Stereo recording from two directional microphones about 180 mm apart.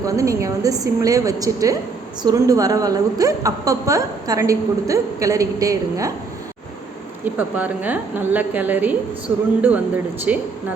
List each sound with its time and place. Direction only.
0.0 s a woman's voice: 20° right (ahead or behind)
7.3 s a woman's voice: 10° right (ahead or behind)